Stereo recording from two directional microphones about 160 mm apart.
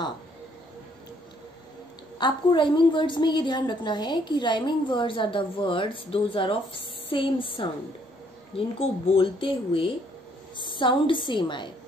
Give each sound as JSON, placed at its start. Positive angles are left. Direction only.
{"t": 2.1, "sound": "a woman's voice", "side_deg": 30}